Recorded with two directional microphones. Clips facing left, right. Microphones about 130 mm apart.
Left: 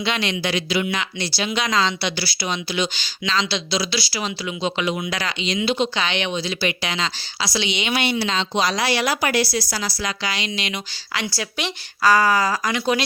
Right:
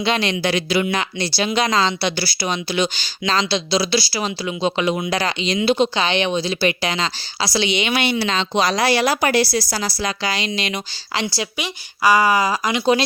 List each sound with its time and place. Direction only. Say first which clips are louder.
0.0 s speech: right 4 dB; 35° right (ahead or behind)
0.5 s speech: right 3 dB; 50° right (ahead or behind)
5.9 s speech: right 4 dB; 35° right (ahead or behind)
11.5 s speech: even; 10° right (ahead or behind)